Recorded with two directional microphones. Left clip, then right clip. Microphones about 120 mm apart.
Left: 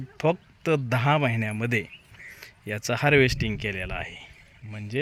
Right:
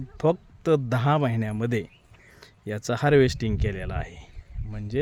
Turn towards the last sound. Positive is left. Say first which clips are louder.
# right 2 dB
turn(degrees=-45)  # may be behind; listen again after turning